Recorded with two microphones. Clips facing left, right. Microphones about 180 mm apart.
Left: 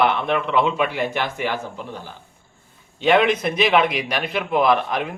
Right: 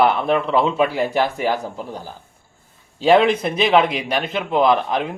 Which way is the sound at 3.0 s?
35° right (ahead or behind).